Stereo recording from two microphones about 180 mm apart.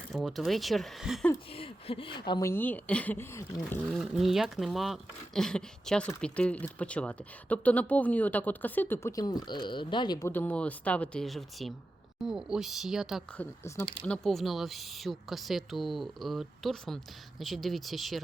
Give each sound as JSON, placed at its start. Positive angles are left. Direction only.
{"t": 0.1, "sound": "speech", "side_deg": 0}
{"t": 1.5, "sound": "speech", "side_deg": 30}
{"t": 2.5, "sound": "speech", "side_deg": 10}
{"t": 3.9, "sound": "speech", "side_deg": 0}
{"t": 13.3, "sound": "speech", "side_deg": 10}